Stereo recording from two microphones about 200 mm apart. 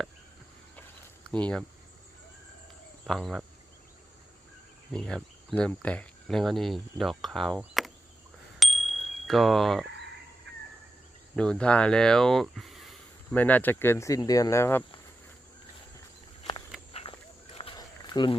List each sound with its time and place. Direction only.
1.3 s cricket: 5° left (ahead or behind)
3.1 s cricket: centre (ahead or behind)
4.9 s cricket: 5° left (ahead or behind)
7.6 s speech: centre (ahead or behind)
8.5 s bicycle bell: centre (ahead or behind)
11.3 s speech: 5° left (ahead or behind)
16.4 s a sound: 25° left (ahead or behind)
16.9 s walk: 30° left (ahead or behind)